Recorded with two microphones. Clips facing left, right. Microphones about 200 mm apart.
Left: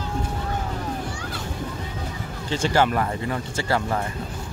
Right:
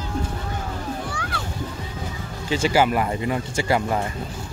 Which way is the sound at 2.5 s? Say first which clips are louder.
Right 2 dB; 5° right (ahead or behind).